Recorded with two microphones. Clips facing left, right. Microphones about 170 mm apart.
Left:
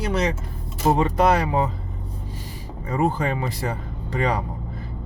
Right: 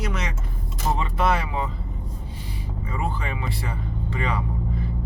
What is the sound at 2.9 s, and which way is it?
Speech, 40° left (ahead or behind).